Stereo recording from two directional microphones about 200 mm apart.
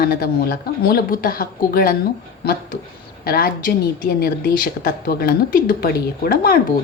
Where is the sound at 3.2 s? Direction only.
50° left (ahead or behind).